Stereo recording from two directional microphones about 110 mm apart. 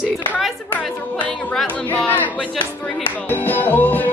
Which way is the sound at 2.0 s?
15° left (ahead or behind).